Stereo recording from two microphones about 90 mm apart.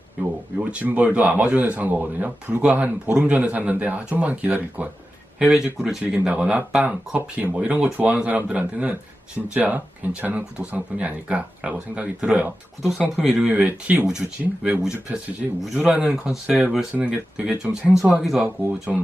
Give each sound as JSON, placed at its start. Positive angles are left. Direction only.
{"t": 0.6, "sound": "speech", "side_deg": -15}
{"t": 7.2, "sound": "speech", "side_deg": -25}
{"t": 7.5, "sound": "speech", "side_deg": -15}
{"t": 13.2, "sound": "speech", "side_deg": 0}
{"t": 13.5, "sound": "speech", "side_deg": -15}
{"t": 15.4, "sound": "speech", "side_deg": 0}